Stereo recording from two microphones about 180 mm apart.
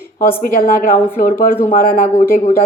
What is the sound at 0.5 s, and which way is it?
A woman's voice, 50° left (ahead or behind).